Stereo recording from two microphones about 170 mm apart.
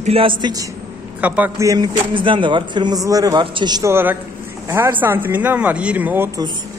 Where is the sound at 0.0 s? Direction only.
35° right (ahead or behind).